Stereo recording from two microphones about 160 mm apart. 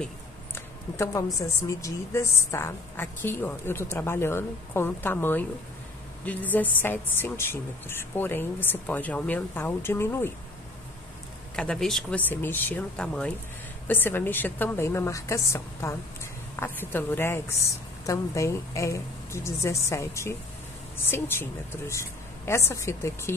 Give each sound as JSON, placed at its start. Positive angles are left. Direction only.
{"t": 0.9, "sound": "speech", "side_deg": 20}
{"t": 11.5, "sound": "a woman's voice", "side_deg": 5}